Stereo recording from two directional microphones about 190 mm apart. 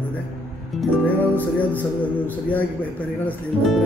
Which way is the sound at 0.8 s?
10° left (ahead or behind).